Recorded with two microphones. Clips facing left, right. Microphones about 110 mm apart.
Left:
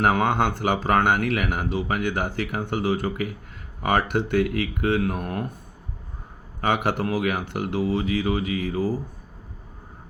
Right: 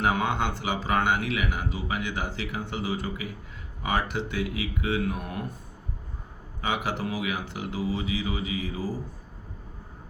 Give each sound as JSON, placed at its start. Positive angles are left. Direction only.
{"t": 0.0, "sound": "a man's voice", "side_deg": 55}
{"t": 6.6, "sound": "a man's voice", "side_deg": 55}